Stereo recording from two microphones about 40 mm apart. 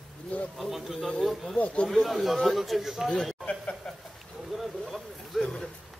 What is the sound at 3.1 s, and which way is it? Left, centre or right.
Speech, centre.